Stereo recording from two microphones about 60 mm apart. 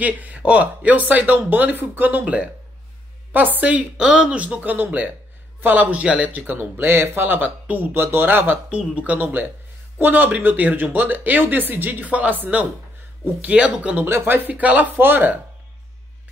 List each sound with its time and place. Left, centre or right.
0.0 s speech: right
4.0 s speech: centre; by 8.5 s right
8.6 s speech: right
14.0 s speech: right
14.5 s speech: right